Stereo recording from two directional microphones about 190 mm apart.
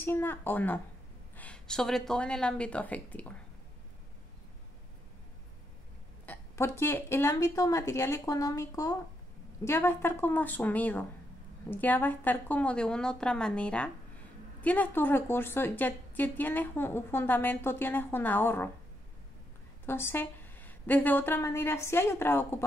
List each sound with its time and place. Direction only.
0.0 s a woman's voice: 10° left (ahead or behind)
6.2 s a woman's voice: 10° left (ahead or behind)
19.9 s a woman's voice: 10° left (ahead or behind)